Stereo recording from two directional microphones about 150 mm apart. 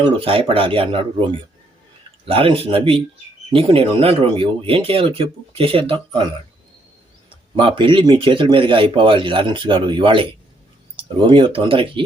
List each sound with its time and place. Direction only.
0.2 s speech: 40° right (ahead or behind)
7.3 s speech: 35° right (ahead or behind)